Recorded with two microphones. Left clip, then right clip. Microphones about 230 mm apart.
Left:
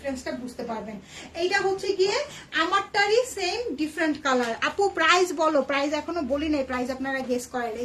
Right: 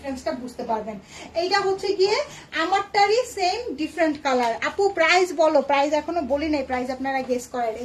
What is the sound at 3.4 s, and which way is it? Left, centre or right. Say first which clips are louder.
A woman's voice: right 4 dB; centre.